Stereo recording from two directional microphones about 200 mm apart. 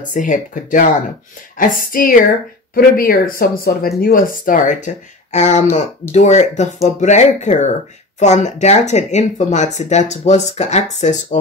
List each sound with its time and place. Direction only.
0.1 s speech: 40° left (ahead or behind)